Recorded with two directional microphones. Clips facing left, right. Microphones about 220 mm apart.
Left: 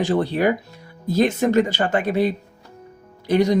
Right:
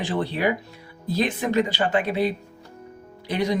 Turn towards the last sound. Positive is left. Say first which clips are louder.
# left 7 dB
turn(degrees=45)  # may be behind; listen again after turning